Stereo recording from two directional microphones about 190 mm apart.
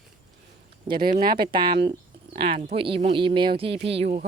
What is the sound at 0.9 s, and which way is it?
Speech, 50° right (ahead or behind).